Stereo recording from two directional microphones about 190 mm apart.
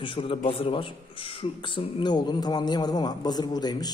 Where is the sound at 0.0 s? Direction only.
25° left (ahead or behind).